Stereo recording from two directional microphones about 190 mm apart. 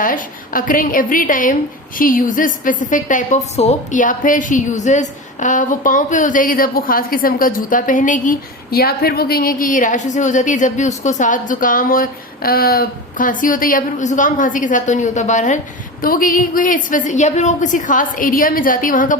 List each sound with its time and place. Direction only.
0.0 s a woman's voice: 45° left (ahead or behind)